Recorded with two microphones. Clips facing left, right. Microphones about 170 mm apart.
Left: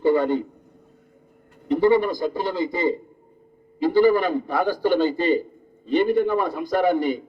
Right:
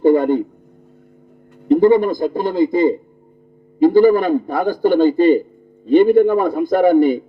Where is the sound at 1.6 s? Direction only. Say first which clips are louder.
Right 6 dB; 50° right (ahead or behind).